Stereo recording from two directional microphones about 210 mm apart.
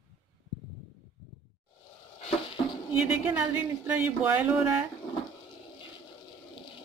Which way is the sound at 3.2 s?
10° right (ahead or behind).